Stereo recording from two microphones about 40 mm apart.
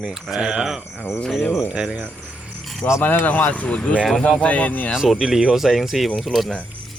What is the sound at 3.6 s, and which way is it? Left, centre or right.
Speech, left.